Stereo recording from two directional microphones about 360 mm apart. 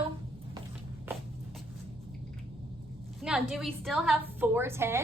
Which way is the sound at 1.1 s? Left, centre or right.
Centre.